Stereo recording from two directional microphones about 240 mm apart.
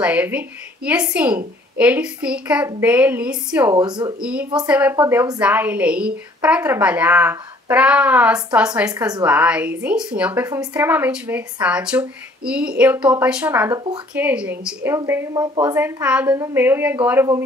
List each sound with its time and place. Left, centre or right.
0.0 s a woman's voice: centre
3.7 s a woman's voice: centre
4.2 s a woman's voice: centre